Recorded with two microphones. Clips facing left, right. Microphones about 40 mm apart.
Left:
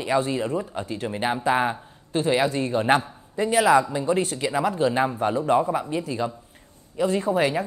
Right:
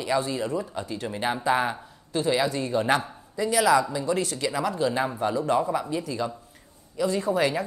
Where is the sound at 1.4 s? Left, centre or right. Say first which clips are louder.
Left 1 dB; left.